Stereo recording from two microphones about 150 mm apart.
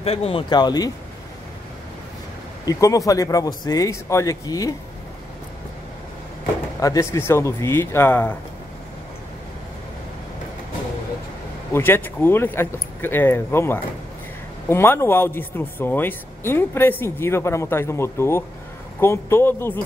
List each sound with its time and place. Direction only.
0.0 s speech: 40° left (ahead or behind); by 0.9 s 25° left (ahead or behind)
2.6 s speech: 20° left (ahead or behind)
6.8 s speech: 20° left (ahead or behind)
11.7 s speech: 15° left (ahead or behind)